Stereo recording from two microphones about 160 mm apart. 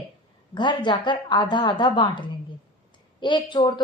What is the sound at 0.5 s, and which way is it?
A woman's voice, 30° left (ahead or behind).